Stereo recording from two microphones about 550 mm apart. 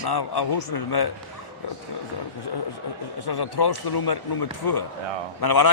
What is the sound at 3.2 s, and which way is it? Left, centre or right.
A man's voice, left.